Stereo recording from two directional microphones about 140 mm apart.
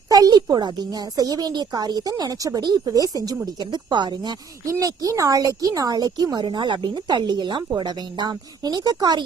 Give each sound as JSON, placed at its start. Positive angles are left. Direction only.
{"t": 0.1, "sound": "speech", "side_deg": -30}